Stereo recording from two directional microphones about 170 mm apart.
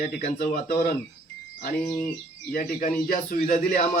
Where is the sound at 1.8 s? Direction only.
10° left (ahead or behind).